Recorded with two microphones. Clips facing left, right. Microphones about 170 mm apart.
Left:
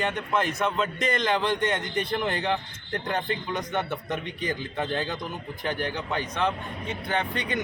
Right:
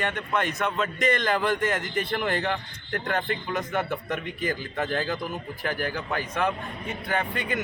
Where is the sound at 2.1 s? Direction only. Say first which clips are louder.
Even; 20° left (ahead or behind).